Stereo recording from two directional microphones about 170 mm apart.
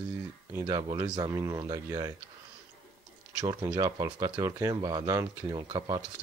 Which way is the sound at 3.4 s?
20° right (ahead or behind).